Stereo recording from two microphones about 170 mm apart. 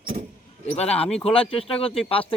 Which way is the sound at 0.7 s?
35° left (ahead or behind).